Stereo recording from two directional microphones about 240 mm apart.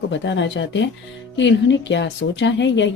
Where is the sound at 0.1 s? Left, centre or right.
Left.